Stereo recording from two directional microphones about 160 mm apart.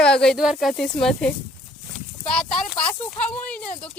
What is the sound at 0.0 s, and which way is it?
Speech, 5° left (ahead or behind).